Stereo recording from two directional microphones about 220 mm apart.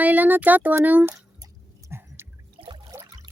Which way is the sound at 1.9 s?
10° right (ahead or behind).